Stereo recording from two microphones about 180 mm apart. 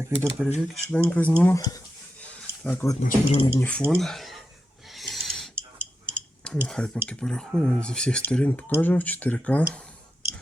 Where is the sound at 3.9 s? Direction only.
Centre (ahead or behind).